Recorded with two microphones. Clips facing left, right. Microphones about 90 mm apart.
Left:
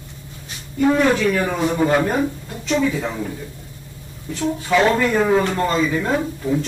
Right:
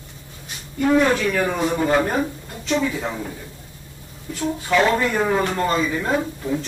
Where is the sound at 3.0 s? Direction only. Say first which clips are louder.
Left 2 dB; centre (ahead or behind).